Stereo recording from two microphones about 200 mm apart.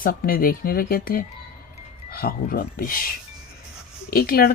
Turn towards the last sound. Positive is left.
turn(degrees=50)  # may be behind; listen again after turning